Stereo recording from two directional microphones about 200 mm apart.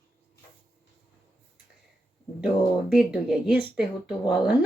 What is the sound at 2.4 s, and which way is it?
Speech, 5° right (ahead or behind).